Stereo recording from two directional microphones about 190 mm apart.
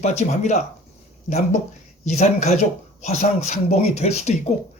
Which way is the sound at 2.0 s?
40° left (ahead or behind).